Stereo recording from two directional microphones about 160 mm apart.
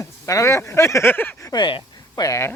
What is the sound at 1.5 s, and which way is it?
Speech, 30° left (ahead or behind).